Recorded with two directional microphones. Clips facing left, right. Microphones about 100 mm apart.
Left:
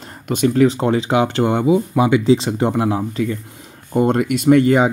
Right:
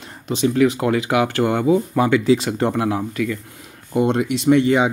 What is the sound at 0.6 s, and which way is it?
Speech, 30° left (ahead or behind).